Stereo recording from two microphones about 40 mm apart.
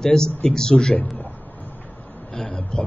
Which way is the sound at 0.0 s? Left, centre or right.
Centre.